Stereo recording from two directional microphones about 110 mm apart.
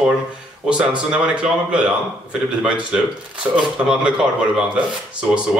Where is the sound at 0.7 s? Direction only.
10° right (ahead or behind).